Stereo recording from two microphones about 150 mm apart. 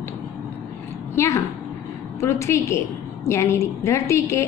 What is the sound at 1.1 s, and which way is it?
A woman's voice, 20° left (ahead or behind).